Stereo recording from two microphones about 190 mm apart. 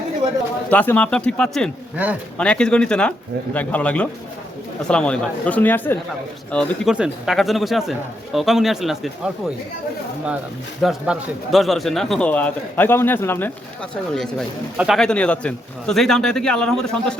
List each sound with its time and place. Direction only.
0.7 s a man's voice: 10° left (ahead or behind)
10.8 s a man's voice: centre (ahead or behind)
14.2 s a man's voice: centre (ahead or behind)